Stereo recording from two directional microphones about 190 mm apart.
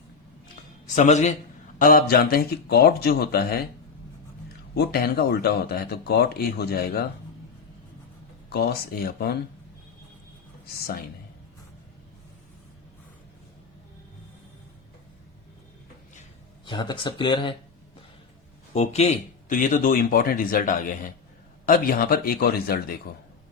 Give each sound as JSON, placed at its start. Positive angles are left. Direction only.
{"t": 0.9, "sound": "a man's voice", "side_deg": 40}
{"t": 1.8, "sound": "speech", "side_deg": 50}
{"t": 4.7, "sound": "speech", "side_deg": 55}
{"t": 8.4, "sound": "speech", "side_deg": 55}
{"t": 10.8, "sound": "speech", "side_deg": 55}
{"t": 16.6, "sound": "speech", "side_deg": 25}
{"t": 18.7, "sound": "speech", "side_deg": 35}